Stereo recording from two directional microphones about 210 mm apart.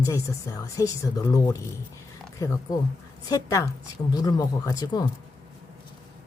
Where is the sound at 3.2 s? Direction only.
15° left (ahead or behind).